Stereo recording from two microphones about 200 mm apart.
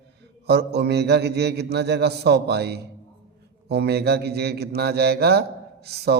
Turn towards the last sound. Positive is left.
turn(degrees=-55)  # may be behind; listen again after turning